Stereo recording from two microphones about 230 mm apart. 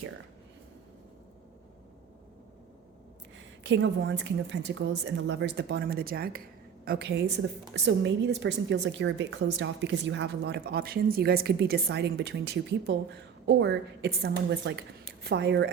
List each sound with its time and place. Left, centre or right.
3.6 s a woman's voice: right